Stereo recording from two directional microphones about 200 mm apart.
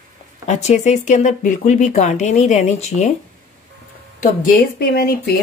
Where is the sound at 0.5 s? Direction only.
35° left (ahead or behind).